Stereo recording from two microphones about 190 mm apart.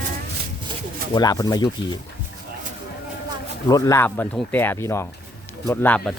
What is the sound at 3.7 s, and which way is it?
Speech, 15° left (ahead or behind).